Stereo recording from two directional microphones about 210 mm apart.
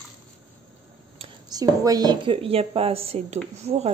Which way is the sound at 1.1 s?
20° right (ahead or behind).